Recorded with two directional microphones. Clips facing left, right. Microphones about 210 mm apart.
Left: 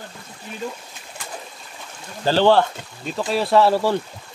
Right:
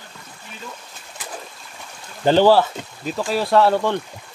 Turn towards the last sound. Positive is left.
turn(degrees=5)  # may be behind; listen again after turning